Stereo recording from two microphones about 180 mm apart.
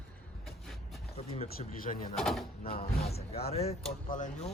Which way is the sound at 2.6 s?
55° left (ahead or behind).